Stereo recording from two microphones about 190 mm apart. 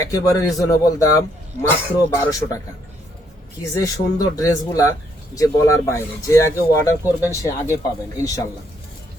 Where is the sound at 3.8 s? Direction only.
20° left (ahead or behind).